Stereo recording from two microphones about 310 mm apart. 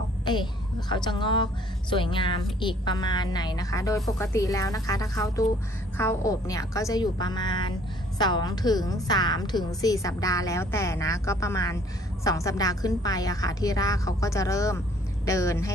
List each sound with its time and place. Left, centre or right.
0.8 s a woman's voice: centre